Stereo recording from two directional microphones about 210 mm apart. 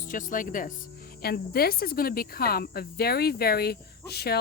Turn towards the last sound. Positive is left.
turn(degrees=50)  # may be behind; listen again after turning